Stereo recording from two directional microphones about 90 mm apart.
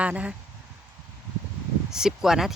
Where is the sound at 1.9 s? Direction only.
5° right (ahead or behind).